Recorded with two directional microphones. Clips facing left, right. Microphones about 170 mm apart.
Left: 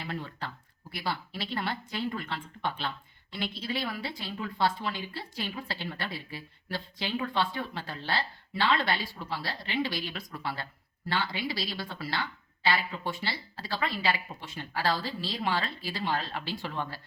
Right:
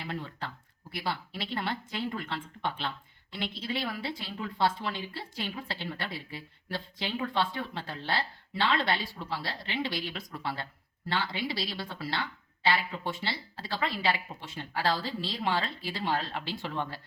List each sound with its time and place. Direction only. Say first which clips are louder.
0.1 s a woman's voice: even; 20° right (ahead or behind)